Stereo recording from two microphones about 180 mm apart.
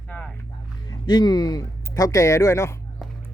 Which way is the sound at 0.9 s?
25° left (ahead or behind).